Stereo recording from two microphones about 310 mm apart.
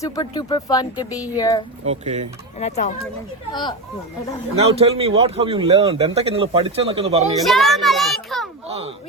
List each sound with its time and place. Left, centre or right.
0.0 s speech: centre
2.0 s speech: right
2.6 s speech: left
4.5 s speech: centre
7.4 s a child's voice: centre
8.6 s speech: centre